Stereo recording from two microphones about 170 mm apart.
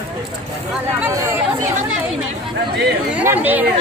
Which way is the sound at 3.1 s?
10° right (ahead or behind).